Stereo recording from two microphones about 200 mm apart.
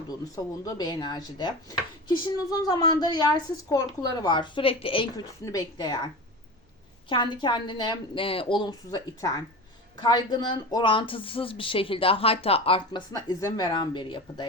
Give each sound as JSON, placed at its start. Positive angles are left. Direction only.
{"t": 0.3, "sound": "a woman's voice", "side_deg": 15}
{"t": 7.1, "sound": "a woman's voice", "side_deg": 25}